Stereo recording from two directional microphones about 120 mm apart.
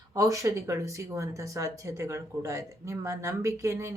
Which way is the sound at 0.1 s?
30° right (ahead or behind).